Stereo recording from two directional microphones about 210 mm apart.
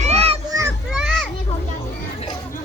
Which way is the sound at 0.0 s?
30° right (ahead or behind).